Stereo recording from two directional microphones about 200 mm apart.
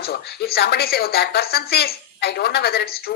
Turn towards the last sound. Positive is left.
turn(degrees=50)  # may be behind; listen again after turning